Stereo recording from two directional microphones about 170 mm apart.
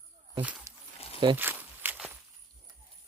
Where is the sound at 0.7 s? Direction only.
20° right (ahead or behind).